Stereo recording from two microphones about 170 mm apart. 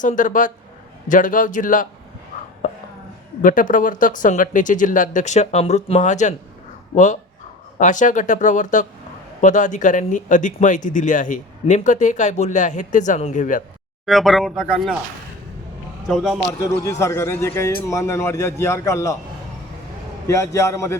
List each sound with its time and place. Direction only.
0.0 s speech: 50° left (ahead or behind)
2.6 s a sound: 50° left (ahead or behind)
3.4 s speech: 50° left (ahead or behind)
14.0 s speech: centre (ahead or behind)
16.0 s speech: centre (ahead or behind)
16.6 s a man's voice: 20° left (ahead or behind)
20.2 s a man's voice: 20° left (ahead or behind)